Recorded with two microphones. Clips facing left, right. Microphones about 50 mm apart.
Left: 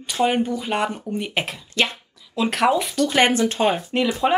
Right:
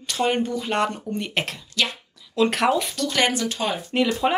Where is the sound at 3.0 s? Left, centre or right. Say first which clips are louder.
Left 5 dB; left.